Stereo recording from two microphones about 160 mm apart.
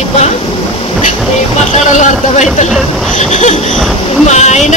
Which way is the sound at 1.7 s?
50° left (ahead or behind).